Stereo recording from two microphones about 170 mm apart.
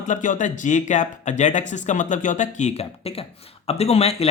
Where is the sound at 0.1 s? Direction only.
50° left (ahead or behind).